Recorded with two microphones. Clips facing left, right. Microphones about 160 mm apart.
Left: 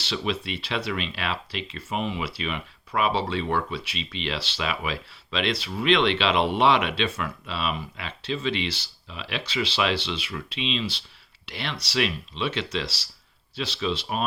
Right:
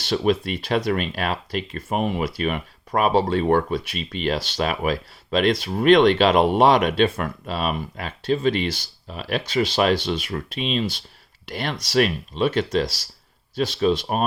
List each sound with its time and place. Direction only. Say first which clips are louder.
0.0 s speech: right 8 dB; 45° right (ahead or behind)